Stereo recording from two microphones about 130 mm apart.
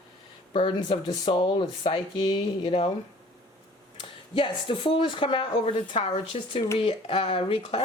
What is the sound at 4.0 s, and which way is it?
Speech, 40° left (ahead or behind).